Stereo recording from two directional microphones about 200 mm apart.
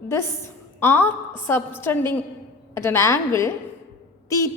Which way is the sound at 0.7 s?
10° left (ahead or behind).